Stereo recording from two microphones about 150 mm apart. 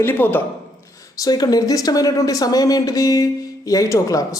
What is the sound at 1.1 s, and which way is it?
Speech, 25° left (ahead or behind).